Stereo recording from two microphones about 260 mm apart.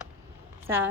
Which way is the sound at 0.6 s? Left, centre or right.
Centre.